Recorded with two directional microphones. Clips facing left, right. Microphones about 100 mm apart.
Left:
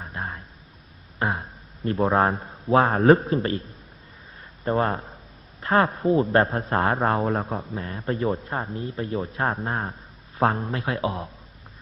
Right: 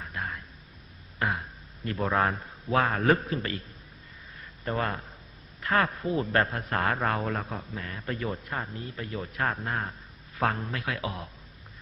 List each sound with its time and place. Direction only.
0.0 s a sound: 25° left (ahead or behind)
1.2 s a man's voice: 30° left (ahead or behind)
4.6 s a man's voice: 30° left (ahead or behind)